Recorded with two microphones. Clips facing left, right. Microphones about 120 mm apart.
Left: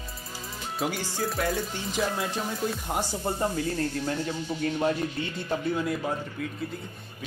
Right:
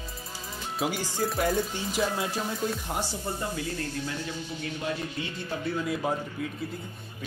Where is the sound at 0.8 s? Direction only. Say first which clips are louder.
Right 1 dB; centre (ahead or behind).